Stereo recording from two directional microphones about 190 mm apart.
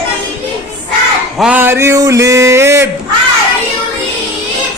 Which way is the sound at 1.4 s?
10° right (ahead or behind).